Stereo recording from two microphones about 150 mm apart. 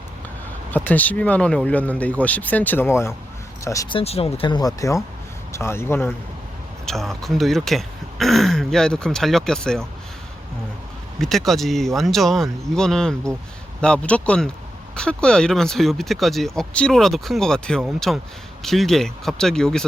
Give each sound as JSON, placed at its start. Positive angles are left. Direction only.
{"t": 0.7, "sound": "speech", "side_deg": 10}
{"t": 3.8, "sound": "speech", "side_deg": 40}
{"t": 6.8, "sound": "speech", "side_deg": 0}
{"t": 11.2, "sound": "speech", "side_deg": 0}